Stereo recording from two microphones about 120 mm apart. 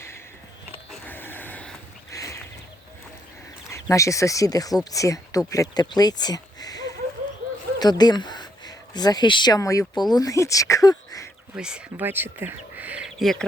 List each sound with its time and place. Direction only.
1.0 s a sound: 15° left (ahead or behind)
2.0 s horse: 25° left (ahead or behind)
3.7 s speech: 25° left (ahead or behind)
7.8 s a sound: 35° left (ahead or behind)
9.6 s speech: 30° left (ahead or behind)
11.5 s speech: 5° right (ahead or behind)
12.0 s speech: 15° right (ahead or behind)
13.1 s speech: centre (ahead or behind)